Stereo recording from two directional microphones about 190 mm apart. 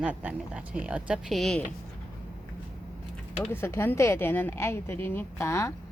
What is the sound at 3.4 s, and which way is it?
Speech, 10° left (ahead or behind).